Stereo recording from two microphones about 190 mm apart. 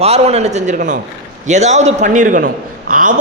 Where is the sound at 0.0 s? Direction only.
35° right (ahead or behind).